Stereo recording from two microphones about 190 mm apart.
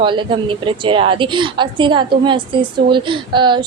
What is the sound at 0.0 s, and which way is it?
A woman's voice, 25° right (ahead or behind).